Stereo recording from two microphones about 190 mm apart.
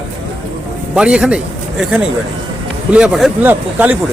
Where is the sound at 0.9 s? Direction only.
5° right (ahead or behind).